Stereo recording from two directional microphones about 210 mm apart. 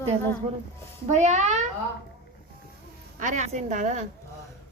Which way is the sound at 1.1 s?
35° right (ahead or behind).